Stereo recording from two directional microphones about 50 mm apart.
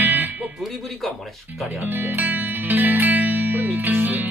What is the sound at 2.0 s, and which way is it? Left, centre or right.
Music, right.